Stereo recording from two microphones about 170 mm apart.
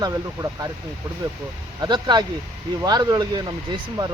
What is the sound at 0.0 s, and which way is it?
Speech, 20° right (ahead or behind).